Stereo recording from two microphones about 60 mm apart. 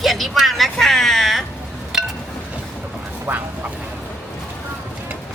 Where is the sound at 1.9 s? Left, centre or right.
Centre.